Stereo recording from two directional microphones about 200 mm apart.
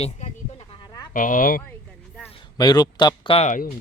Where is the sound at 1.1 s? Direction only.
40° left (ahead or behind).